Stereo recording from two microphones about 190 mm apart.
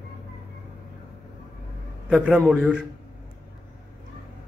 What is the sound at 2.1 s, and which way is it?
Speech, centre (ahead or behind).